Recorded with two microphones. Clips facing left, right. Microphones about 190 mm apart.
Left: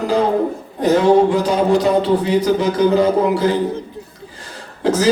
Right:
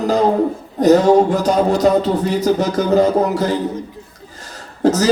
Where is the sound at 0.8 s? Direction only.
40° right (ahead or behind).